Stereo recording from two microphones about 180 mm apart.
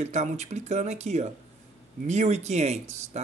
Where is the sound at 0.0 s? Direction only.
40° right (ahead or behind).